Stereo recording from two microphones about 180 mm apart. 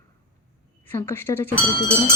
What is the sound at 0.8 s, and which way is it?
Speech, 10° left (ahead or behind).